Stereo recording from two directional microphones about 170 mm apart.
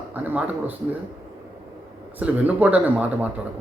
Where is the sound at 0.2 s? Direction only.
10° right (ahead or behind).